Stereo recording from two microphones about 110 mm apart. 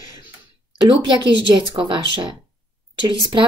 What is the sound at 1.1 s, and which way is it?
A woman's voice, 45° right (ahead or behind).